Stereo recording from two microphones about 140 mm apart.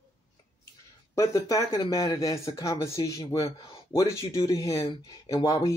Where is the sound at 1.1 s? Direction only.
25° left (ahead or behind).